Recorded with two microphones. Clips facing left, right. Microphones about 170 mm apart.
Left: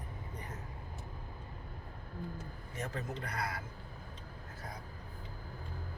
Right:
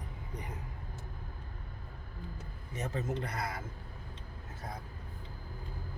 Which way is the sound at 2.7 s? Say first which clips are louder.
Right 5 dB; 20° right (ahead or behind).